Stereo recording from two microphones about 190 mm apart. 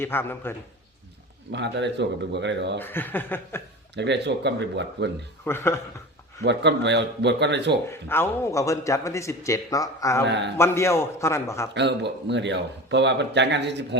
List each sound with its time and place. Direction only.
0.0 s a man's voice: 10° left (ahead or behind)
1.5 s speech: 65° right (ahead or behind)
2.7 s a man's voice: 10° left (ahead or behind)
3.9 s speech: 65° right (ahead or behind)
5.5 s a man's voice: 15° left (ahead or behind)
6.4 s speech: 65° right (ahead or behind)
7.9 s a man's voice: 10° left (ahead or behind)
10.2 s speech: 65° right (ahead or behind)
10.6 s a man's voice: 15° left (ahead or behind)
11.7 s speech: 65° right (ahead or behind)